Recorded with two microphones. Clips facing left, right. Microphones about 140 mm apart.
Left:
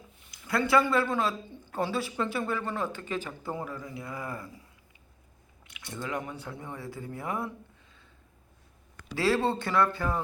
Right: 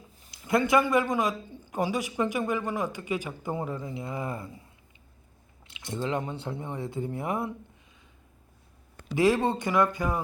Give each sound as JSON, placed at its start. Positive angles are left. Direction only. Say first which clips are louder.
{"t": 0.2, "sound": "speech", "louder": "right 4 dB", "side_deg": -25}
{"t": 5.6, "sound": "speech", "louder": "right 6 dB", "side_deg": -25}
{"t": 9.1, "sound": "speech", "louder": "right 3 dB", "side_deg": -15}